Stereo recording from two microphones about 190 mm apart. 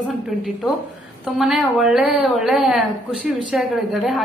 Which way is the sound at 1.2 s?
5° right (ahead or behind).